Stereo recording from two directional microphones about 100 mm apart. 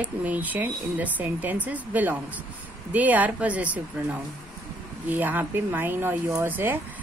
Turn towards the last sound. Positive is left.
turn(degrees=-20)  # may be behind; listen again after turning